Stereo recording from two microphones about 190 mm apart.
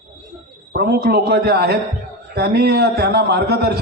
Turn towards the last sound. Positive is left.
turn(degrees=-60)  # may be behind; listen again after turning